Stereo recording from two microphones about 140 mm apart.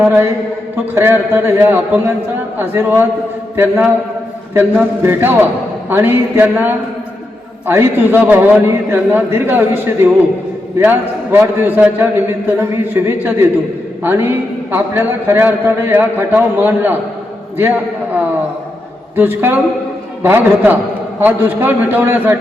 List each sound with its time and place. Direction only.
0.0 s a man's voice: 15° right (ahead or behind)
19.1 s a man's voice: 15° right (ahead or behind)